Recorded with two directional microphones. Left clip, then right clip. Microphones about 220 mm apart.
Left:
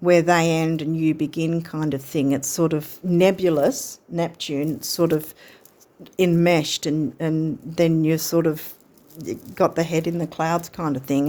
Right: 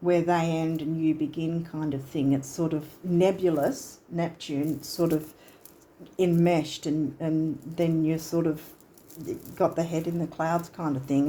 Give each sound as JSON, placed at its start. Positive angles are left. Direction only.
{"t": 0.0, "sound": "speech", "side_deg": 50}